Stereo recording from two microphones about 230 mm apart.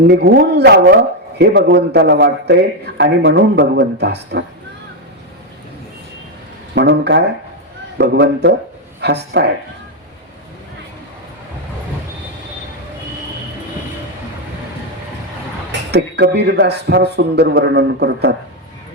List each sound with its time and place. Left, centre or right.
0.1 s a man's voice: right
6.7 s a man's voice: right
15.9 s a man's voice: right